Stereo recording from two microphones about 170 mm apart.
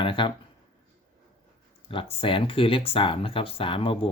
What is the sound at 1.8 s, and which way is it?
Speech, 30° left (ahead or behind).